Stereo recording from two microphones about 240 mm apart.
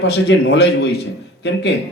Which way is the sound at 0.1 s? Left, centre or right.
Left.